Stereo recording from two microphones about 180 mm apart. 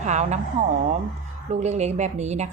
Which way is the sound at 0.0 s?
40° right (ahead or behind).